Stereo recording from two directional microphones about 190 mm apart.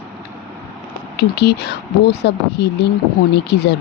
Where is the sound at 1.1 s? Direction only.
60° left (ahead or behind).